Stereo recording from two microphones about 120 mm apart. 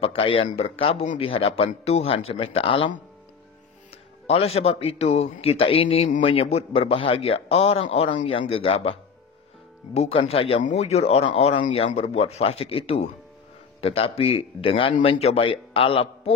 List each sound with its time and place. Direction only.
0.0 s a man's voice: 50° left (ahead or behind)
4.3 s a man's voice: 55° left (ahead or behind)
9.9 s speech: 55° left (ahead or behind)
10.6 s a man's voice: 70° left (ahead or behind); by 16.3 s 50° left (ahead or behind)